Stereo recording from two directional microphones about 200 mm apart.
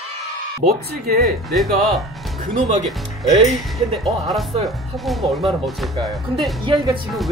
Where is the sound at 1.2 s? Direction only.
Centre (ahead or behind).